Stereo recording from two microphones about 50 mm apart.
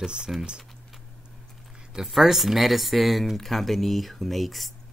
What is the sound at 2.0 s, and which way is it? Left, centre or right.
Speech, centre.